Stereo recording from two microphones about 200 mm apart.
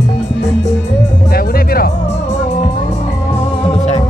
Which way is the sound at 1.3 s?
50° left (ahead or behind).